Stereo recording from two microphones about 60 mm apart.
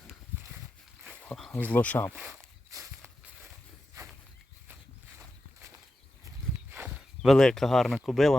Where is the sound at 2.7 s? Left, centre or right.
Right.